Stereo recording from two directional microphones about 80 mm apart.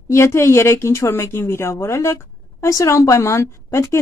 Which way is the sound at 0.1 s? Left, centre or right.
Left.